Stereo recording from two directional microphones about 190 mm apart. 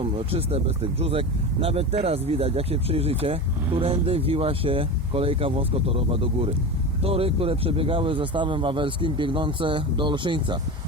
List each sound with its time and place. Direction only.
0.0 s speech: 30° right (ahead or behind)